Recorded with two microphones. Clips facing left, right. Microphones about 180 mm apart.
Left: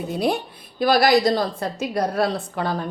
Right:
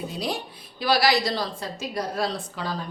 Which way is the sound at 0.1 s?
55° left (ahead or behind).